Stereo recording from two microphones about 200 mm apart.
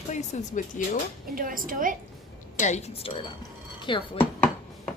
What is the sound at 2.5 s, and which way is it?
A woman's voice, 35° left (ahead or behind).